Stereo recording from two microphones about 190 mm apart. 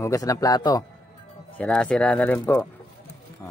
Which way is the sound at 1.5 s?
5° left (ahead or behind).